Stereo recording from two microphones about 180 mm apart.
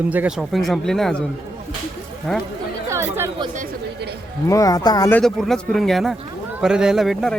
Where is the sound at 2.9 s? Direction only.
15° right (ahead or behind).